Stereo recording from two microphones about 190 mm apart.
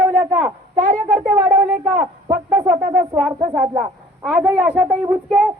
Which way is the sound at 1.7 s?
5° right (ahead or behind).